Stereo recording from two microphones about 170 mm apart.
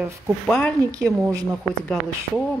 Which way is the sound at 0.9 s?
20° right (ahead or behind).